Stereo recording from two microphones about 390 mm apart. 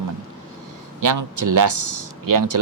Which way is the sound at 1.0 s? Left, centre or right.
Right.